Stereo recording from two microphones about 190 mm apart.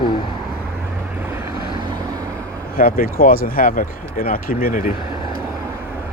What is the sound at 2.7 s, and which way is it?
Speech, 50° left (ahead or behind).